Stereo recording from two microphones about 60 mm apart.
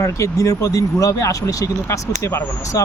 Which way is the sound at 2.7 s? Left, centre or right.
Left.